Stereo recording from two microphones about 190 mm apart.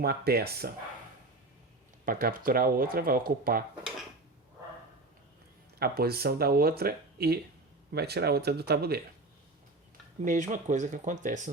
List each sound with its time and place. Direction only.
0.0 s speech: 55° right (ahead or behind)
2.0 s speech: 50° right (ahead or behind)
5.8 s speech: 55° right (ahead or behind)
10.2 s speech: 40° right (ahead or behind)